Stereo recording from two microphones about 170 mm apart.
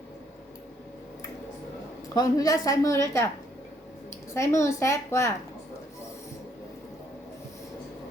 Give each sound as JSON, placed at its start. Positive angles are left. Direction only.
{"t": 2.1, "sound": "a woman's voice", "side_deg": 20}
{"t": 4.4, "sound": "a woman's voice", "side_deg": 15}